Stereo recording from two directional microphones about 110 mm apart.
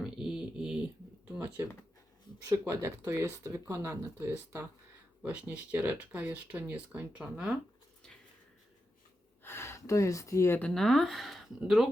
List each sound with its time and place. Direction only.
0.0 s a sound: 5° right (ahead or behind)
2.5 s speech: 30° right (ahead or behind)
5.2 s speech: 10° right (ahead or behind)
9.4 s speech: 20° left (ahead or behind)
10.6 s speech: 5° left (ahead or behind)